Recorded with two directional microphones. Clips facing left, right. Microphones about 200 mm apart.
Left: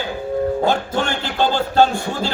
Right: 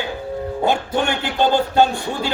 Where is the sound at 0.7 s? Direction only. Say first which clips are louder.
Even; 15° right (ahead or behind).